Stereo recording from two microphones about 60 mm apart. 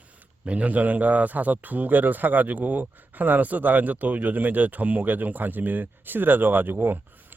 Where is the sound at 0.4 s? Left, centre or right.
Right.